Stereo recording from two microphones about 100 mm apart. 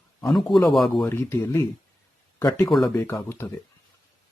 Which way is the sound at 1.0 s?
25° left (ahead or behind).